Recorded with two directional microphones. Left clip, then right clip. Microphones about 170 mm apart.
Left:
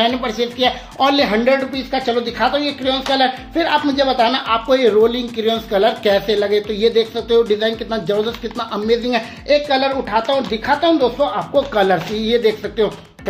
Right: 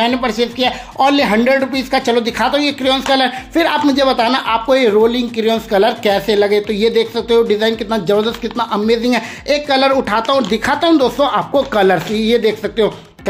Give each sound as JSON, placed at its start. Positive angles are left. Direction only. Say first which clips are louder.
{"t": 0.0, "sound": "speech", "louder": "right 2 dB", "side_deg": -30}